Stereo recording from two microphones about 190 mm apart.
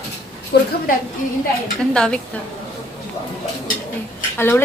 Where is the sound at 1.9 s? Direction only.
5° left (ahead or behind).